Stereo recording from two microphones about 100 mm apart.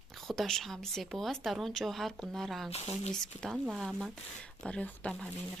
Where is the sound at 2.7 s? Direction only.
90° left.